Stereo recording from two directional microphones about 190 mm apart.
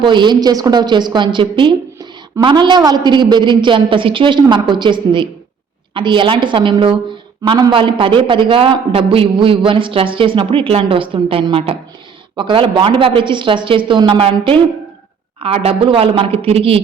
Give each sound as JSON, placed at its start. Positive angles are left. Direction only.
{"t": 0.0, "sound": "a man's voice", "side_deg": -25}